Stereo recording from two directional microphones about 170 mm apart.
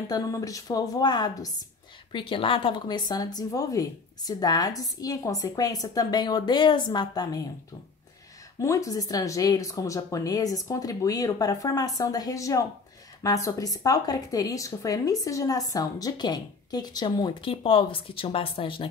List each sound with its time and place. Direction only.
0.1 s speech: 20° left (ahead or behind)
8.5 s speech: 20° left (ahead or behind)